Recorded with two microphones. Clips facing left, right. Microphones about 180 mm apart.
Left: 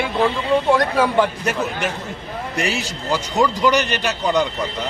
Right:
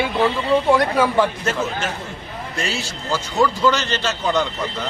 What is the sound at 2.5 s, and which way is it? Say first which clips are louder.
A man's voice: left 3 dB; 15° left (ahead or behind).